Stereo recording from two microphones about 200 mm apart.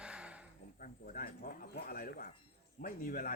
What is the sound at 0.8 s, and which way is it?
Speech, 45° left (ahead or behind).